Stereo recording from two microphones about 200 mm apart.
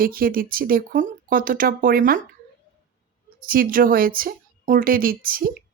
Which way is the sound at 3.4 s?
45° right (ahead or behind).